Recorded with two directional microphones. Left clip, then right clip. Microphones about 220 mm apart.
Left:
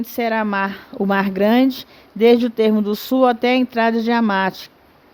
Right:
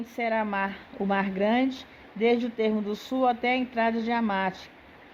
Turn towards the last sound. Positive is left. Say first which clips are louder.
# left 9 dB
turn(degrees=55)  # may be behind; listen again after turning